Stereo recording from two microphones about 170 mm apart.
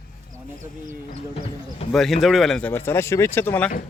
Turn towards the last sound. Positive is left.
turn(degrees=10)  # may be behind; listen again after turning